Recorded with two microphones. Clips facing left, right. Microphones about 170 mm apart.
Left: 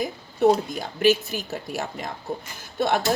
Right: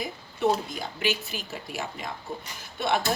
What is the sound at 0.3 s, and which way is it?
Speech, 45° left (ahead or behind).